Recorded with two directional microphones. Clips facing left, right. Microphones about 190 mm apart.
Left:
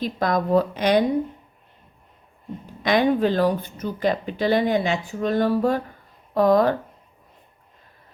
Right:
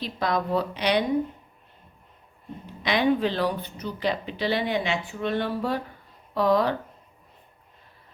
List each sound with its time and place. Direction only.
0.0 s speech: 45° left (ahead or behind)
2.8 s speech: 45° left (ahead or behind)